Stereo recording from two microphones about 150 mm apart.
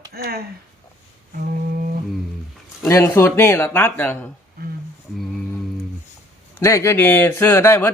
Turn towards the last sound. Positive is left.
turn(degrees=15)  # may be behind; listen again after turning